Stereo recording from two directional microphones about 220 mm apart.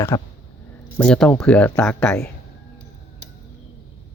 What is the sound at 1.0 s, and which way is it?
Speech, 5° left (ahead or behind).